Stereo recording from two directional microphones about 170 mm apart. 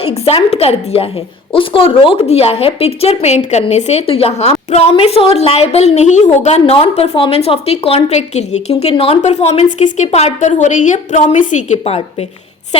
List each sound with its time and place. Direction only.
0.0 s a woman's voice: 35° left (ahead or behind)